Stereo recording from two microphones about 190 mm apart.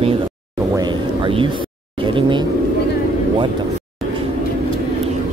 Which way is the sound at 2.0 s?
25° right (ahead or behind).